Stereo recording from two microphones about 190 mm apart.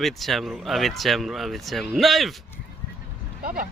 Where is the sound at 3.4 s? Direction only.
50° right (ahead or behind).